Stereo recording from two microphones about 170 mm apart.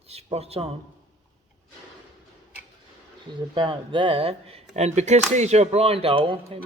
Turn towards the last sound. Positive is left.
turn(degrees=-35)  # may be behind; listen again after turning